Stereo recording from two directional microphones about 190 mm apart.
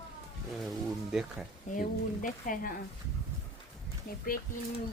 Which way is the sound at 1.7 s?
45° left (ahead or behind).